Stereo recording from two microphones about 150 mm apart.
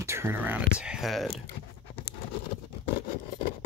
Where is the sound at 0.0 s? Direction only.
15° right (ahead or behind); by 1.3 s centre (ahead or behind).